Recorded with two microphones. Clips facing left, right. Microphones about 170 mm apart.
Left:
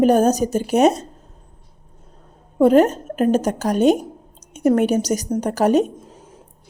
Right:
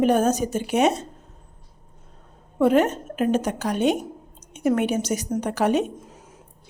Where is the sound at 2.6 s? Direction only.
40° left (ahead or behind).